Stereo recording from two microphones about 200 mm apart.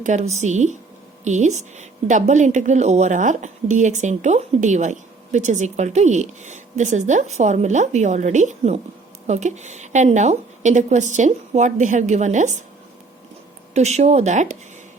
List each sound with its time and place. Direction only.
0.0 s speech: 35° right (ahead or behind)
13.7 s speech: 35° right (ahead or behind)